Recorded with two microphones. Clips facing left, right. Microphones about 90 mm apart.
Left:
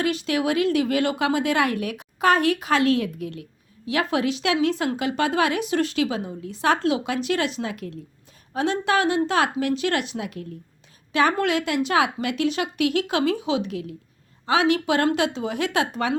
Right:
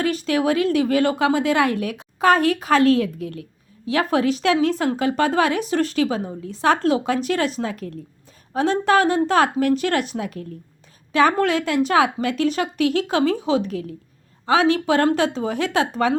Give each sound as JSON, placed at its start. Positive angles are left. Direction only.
{"t": 0.0, "sound": "a woman's voice", "side_deg": -35}